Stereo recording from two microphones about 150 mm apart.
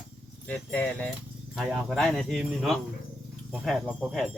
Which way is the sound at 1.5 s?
Centre (ahead or behind).